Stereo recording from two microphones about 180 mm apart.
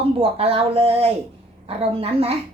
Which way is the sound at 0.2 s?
35° right (ahead or behind).